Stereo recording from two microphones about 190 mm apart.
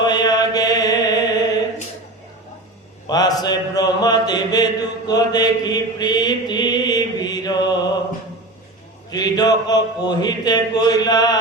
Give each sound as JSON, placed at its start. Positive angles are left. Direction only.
{"t": 0.0, "sound": "mantra", "side_deg": 20}
{"t": 3.1, "sound": "mantra", "side_deg": 20}
{"t": 9.0, "sound": "a man's voice", "side_deg": 20}